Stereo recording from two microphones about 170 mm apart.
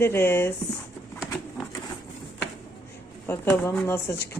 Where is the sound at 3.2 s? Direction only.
15° left (ahead or behind).